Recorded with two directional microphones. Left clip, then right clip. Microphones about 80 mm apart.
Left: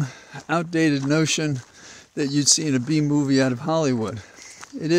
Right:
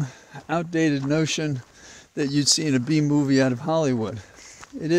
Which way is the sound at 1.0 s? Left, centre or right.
Left.